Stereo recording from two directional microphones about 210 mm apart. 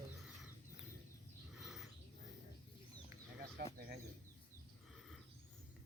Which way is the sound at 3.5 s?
45° right (ahead or behind).